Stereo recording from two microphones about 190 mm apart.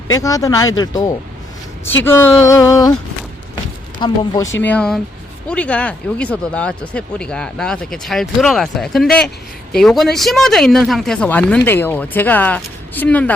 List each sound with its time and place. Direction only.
0.1 s speech: 20° left (ahead or behind)
4.0 s speech: 25° left (ahead or behind)
4.6 s speech: 5° left (ahead or behind)